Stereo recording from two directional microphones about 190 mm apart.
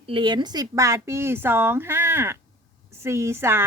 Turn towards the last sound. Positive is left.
turn(degrees=-15)  # may be behind; listen again after turning